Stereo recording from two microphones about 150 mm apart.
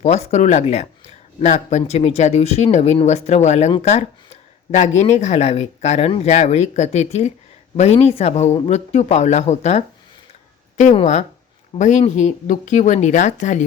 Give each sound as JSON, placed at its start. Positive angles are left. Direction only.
{"t": 0.0, "sound": "speech", "side_deg": 50}
{"t": 11.0, "sound": "speech", "side_deg": 50}